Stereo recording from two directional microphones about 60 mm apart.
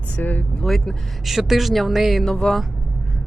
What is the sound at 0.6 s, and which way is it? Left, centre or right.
Speech, centre.